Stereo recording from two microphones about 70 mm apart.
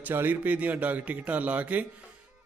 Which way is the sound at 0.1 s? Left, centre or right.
Right.